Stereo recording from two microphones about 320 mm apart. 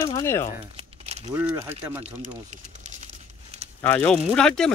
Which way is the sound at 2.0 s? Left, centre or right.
Right.